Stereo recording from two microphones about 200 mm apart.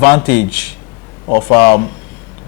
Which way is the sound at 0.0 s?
15° left (ahead or behind).